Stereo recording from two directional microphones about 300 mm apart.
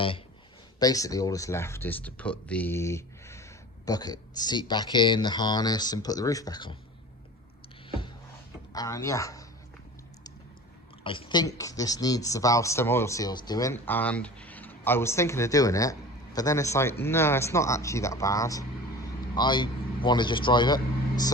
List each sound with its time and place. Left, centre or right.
0.8 s speech: centre
8.7 s speech: centre
11.0 s speech: centre